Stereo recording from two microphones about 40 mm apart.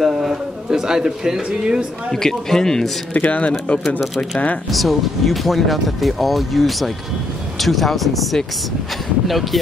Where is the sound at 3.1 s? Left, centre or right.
Left.